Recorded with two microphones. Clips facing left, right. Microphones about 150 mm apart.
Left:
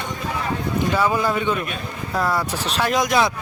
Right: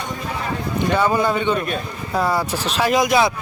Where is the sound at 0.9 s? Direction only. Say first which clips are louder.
Right 3 dB; centre (ahead or behind).